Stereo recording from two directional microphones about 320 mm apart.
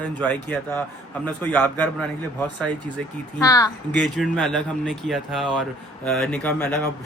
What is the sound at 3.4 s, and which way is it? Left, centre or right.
Speech, centre.